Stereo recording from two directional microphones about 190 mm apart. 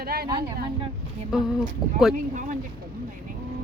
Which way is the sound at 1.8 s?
20° left (ahead or behind).